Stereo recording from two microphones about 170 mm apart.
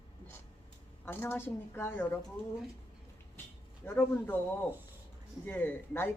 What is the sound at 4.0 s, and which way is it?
Speech, 10° left (ahead or behind).